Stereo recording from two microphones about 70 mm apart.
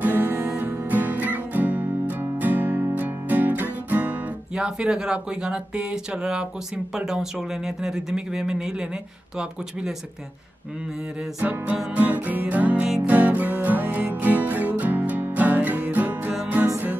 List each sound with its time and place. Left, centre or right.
0.0 s music: right
4.6 s speech: centre
11.4 s music: centre